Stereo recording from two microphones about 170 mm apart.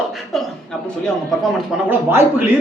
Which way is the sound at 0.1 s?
Centre (ahead or behind).